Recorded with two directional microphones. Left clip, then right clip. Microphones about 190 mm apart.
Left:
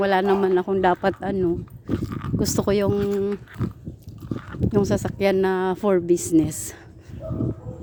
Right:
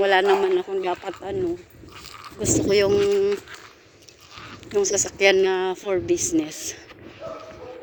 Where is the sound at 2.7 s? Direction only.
15° left (ahead or behind).